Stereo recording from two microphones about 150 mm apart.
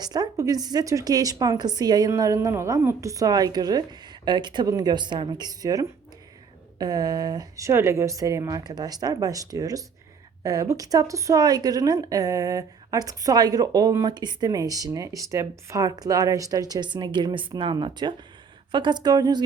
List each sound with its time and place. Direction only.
0.0 s a woman's voice: 25° right (ahead or behind)